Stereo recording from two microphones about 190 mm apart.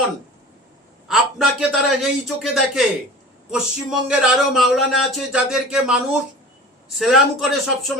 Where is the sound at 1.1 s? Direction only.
Centre (ahead or behind).